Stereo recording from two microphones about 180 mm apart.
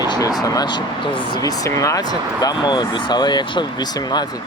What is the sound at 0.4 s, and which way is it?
Speech, 20° left (ahead or behind).